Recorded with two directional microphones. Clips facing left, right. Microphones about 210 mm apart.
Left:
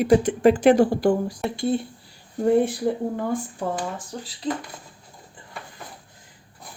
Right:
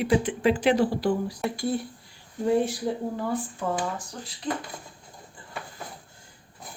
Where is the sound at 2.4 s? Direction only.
55° left (ahead or behind).